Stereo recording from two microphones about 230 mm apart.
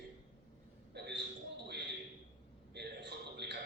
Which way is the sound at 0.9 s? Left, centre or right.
Right.